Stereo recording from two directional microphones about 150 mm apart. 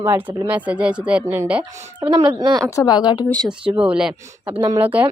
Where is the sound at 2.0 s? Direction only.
30° right (ahead or behind).